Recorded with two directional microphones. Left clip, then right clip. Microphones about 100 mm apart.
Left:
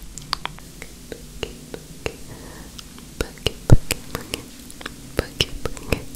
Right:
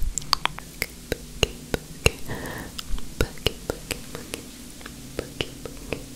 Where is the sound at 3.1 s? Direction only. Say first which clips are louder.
Even; 5° right (ahead or behind).